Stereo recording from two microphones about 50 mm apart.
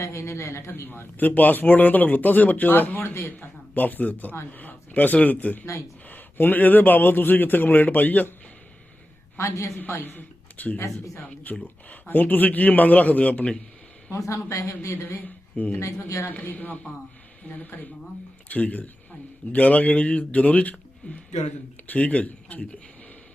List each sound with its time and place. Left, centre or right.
0.0 s a man's voice: left
0.7 s speech: left
9.4 s a man's voice: left
9.7 s a man's voice: left
10.8 s speech: left
11.6 s speech: left
14.1 s a man's voice: left
15.2 s speech: left
15.8 s speech: left
16.3 s a man's voice: left